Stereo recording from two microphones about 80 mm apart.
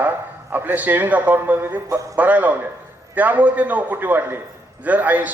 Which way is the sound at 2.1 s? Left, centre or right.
Centre.